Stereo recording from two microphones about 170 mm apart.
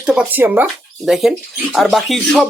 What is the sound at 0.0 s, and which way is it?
Speech, 5° right (ahead or behind).